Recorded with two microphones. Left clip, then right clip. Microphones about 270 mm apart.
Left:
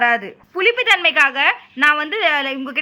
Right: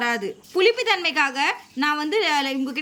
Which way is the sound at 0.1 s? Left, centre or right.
Centre.